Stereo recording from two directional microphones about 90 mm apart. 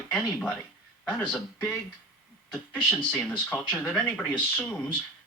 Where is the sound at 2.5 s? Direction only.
15° left (ahead or behind).